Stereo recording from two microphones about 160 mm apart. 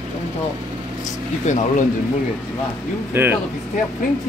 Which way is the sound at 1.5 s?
45° left (ahead or behind).